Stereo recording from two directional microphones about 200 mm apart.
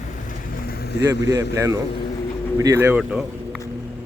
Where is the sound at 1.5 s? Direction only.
15° right (ahead or behind).